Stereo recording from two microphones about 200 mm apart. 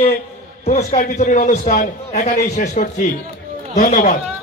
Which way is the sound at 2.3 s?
35° left (ahead or behind).